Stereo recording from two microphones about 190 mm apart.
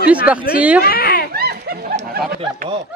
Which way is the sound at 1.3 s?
55° right (ahead or behind).